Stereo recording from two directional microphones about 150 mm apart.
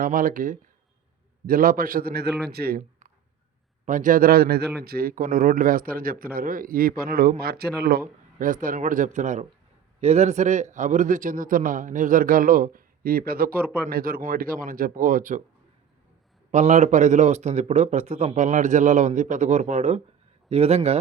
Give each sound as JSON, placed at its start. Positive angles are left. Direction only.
{"t": 0.0, "sound": "a man's voice", "side_deg": -70}
{"t": 3.8, "sound": "a man's voice", "side_deg": -60}
{"t": 8.4, "sound": "a man's voice", "side_deg": -65}
{"t": 16.5, "sound": "a man's voice", "side_deg": -50}